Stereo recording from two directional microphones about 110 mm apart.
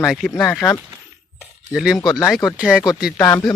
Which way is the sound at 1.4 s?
5° right (ahead or behind).